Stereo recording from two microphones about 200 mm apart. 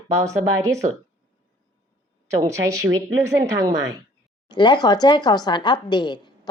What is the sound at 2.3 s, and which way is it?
A woman's voice, 15° right (ahead or behind).